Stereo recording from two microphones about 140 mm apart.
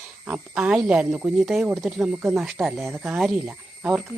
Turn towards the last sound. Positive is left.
turn(degrees=-10)  # may be behind; listen again after turning